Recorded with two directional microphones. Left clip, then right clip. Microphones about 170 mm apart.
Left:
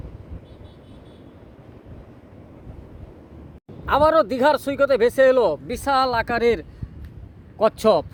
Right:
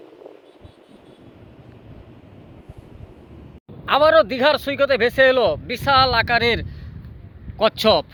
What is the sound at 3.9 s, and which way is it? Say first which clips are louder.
Speech: right 2 dB; 15° left (ahead or behind).